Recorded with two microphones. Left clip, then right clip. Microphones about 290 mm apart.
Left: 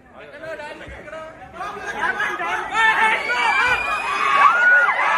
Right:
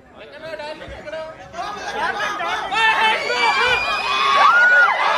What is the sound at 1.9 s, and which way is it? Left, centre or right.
Chatter, right.